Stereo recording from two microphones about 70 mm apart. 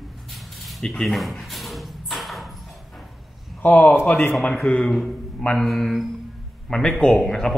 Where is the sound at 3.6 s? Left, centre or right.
Left.